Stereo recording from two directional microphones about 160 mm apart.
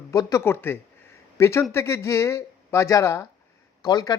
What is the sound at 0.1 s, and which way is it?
A man's voice, 20° left (ahead or behind).